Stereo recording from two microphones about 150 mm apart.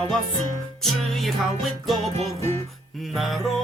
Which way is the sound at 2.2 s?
45° right (ahead or behind).